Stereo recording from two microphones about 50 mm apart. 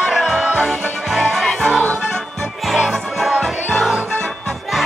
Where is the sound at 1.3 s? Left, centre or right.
Centre.